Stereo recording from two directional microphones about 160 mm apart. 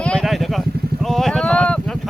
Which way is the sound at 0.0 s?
5° left (ahead or behind).